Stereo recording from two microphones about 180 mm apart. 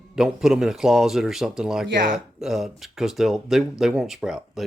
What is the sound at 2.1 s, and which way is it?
Speech, centre (ahead or behind).